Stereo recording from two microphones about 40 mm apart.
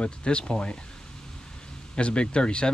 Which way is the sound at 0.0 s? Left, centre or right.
Left.